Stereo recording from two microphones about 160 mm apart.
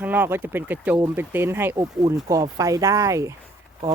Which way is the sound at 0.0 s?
10° right (ahead or behind).